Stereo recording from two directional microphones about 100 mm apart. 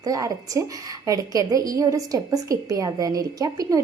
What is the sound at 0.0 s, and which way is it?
A woman's voice, 35° right (ahead or behind).